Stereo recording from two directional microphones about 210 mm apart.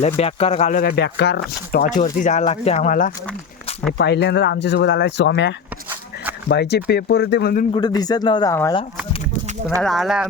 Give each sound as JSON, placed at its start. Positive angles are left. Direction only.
{"t": 0.2, "sound": "speech", "side_deg": 30}
{"t": 2.0, "sound": "speech", "side_deg": 35}
{"t": 3.9, "sound": "speech", "side_deg": 55}
{"t": 7.7, "sound": "speech", "side_deg": 20}
{"t": 9.8, "sound": "speech", "side_deg": 0}